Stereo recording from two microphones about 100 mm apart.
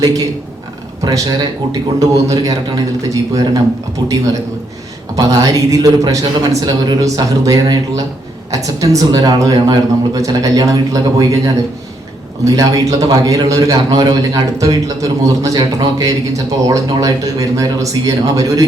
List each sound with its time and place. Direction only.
0.0 s a man's voice: 35° right (ahead or behind)
5.1 s a man's voice: 35° right (ahead or behind)